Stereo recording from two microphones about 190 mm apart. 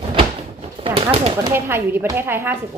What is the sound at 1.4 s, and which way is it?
Speech, 15° right (ahead or behind).